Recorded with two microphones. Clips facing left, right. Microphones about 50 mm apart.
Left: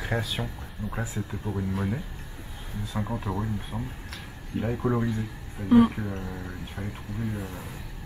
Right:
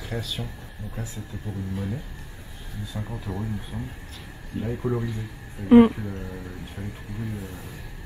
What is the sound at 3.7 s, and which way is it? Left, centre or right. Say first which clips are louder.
Speech: left 1 dB; centre.